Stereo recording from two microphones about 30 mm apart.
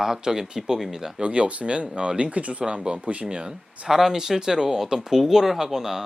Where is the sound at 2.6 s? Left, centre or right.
Right.